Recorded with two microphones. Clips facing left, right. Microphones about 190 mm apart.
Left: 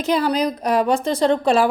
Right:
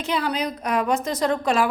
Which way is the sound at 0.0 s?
40° left (ahead or behind).